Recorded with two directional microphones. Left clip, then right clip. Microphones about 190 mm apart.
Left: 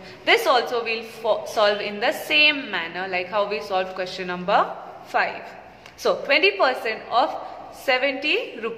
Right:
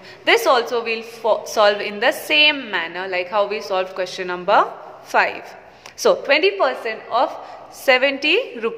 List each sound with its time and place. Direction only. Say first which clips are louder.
0.2 s a woman's voice: right 3 dB; 15° right (ahead or behind)
6.4 s a woman's voice: right 1 dB; 10° right (ahead or behind)
7.8 s a woman's voice: right 6 dB; 30° right (ahead or behind)